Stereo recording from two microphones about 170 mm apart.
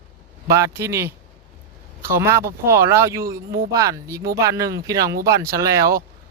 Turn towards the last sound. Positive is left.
turn(degrees=-20)  # may be behind; listen again after turning